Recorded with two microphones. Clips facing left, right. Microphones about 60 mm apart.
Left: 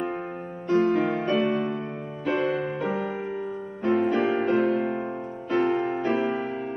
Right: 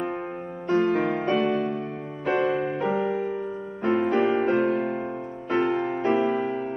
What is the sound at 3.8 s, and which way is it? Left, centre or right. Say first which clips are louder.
Music: right 1 dB; right.